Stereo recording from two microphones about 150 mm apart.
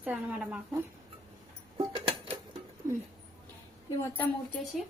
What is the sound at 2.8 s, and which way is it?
Speech, 20° right (ahead or behind).